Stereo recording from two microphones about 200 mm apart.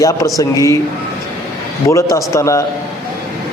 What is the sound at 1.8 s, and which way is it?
Speech, 15° left (ahead or behind).